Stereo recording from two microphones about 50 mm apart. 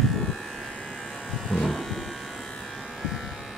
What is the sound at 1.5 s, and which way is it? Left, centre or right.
Electric shaver, centre.